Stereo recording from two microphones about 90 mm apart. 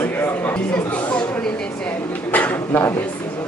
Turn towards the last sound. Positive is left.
turn(degrees=20)  # may be behind; listen again after turning